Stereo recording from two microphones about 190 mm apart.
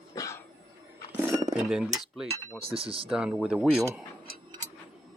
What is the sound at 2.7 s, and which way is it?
Speech, 30° right (ahead or behind).